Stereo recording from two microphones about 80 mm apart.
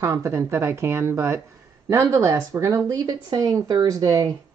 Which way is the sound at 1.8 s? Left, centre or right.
Right.